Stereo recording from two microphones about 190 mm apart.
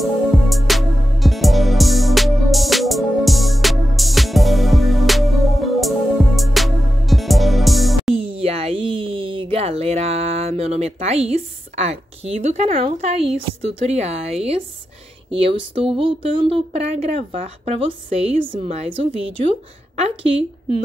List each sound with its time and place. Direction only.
0.0 s music: centre (ahead or behind)
8.1 s a sound: 30° right (ahead or behind)
12.8 s speech: 35° right (ahead or behind)